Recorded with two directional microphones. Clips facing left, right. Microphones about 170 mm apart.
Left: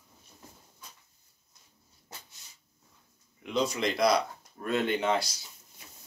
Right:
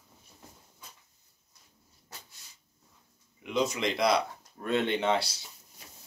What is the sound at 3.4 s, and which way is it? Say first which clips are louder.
Speech: even; 20° right (ahead or behind).